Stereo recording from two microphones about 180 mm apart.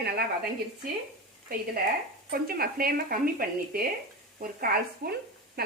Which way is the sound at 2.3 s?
55° right (ahead or behind).